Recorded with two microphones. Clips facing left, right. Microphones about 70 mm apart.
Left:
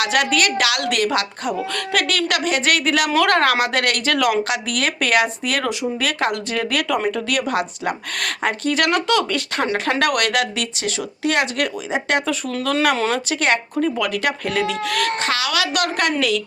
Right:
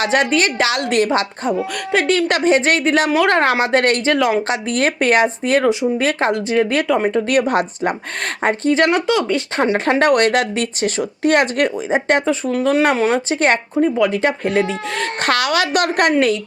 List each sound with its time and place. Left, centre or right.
0.0 s a woman's voice: right
7.3 s speech: right
12.2 s a woman's voice: centre
15.2 s a woman's voice: right